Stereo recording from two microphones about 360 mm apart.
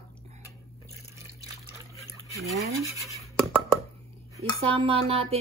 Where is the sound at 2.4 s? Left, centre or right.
Centre.